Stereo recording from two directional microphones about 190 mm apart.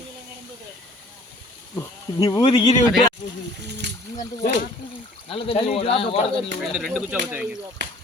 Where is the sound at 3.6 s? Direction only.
65° right (ahead or behind).